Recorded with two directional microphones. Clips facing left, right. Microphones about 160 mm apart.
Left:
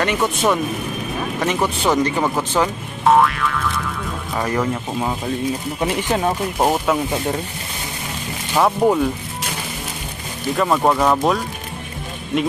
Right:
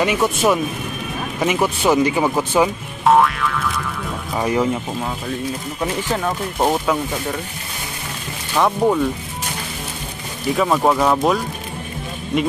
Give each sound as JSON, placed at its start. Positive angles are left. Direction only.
{"t": 0.0, "sound": "speech", "side_deg": -5}
{"t": 3.0, "sound": "music", "side_deg": 0}
{"t": 4.4, "sound": "speech", "side_deg": -15}
{"t": 5.8, "sound": "speech", "side_deg": 20}
{"t": 6.6, "sound": "speech", "side_deg": 5}
{"t": 8.5, "sound": "speech", "side_deg": 10}
{"t": 10.5, "sound": "speech", "side_deg": 0}